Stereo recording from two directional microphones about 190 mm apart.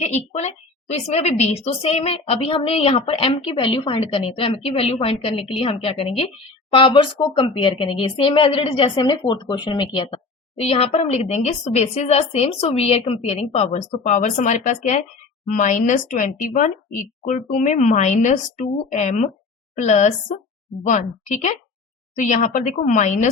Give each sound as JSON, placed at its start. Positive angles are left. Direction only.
{"t": 0.0, "sound": "a woman's voice", "side_deg": 35}